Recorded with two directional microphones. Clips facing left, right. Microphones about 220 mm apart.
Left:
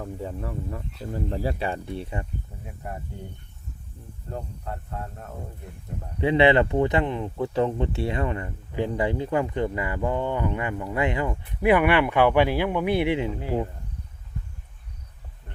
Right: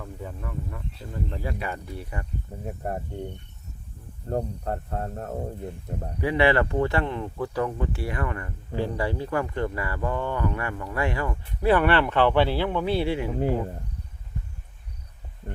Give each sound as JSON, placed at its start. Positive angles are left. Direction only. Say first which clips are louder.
{"t": 0.0, "sound": "speech", "louder": "left 4 dB", "side_deg": 30}
{"t": 2.6, "sound": "speech", "louder": "right 7 dB", "side_deg": -45}
{"t": 4.3, "sound": "speech", "louder": "right 7 dB", "side_deg": -45}
{"t": 6.1, "sound": "speech", "louder": "left 3 dB", "side_deg": 25}